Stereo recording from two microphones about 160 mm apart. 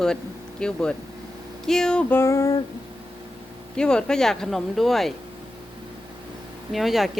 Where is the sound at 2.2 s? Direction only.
20° left (ahead or behind).